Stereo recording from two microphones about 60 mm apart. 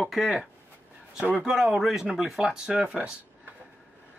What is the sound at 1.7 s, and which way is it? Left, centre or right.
Speech, centre.